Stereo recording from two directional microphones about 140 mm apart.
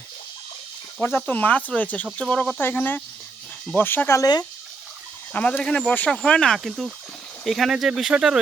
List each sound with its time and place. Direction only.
1.0 s speech: 15° left (ahead or behind)
5.3 s speech: 10° left (ahead or behind)